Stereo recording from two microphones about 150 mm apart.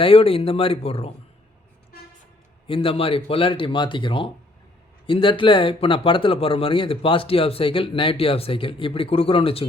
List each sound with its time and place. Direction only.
0.0 s speech: 40° left (ahead or behind)
2.6 s speech: 35° left (ahead or behind)